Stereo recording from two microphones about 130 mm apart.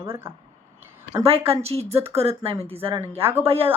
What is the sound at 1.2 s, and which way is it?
Speech, 50° right (ahead or behind).